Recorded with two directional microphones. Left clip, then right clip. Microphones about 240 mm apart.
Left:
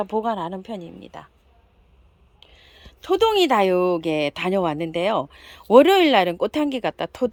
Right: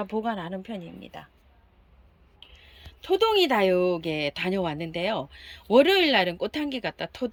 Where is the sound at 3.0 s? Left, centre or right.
Centre.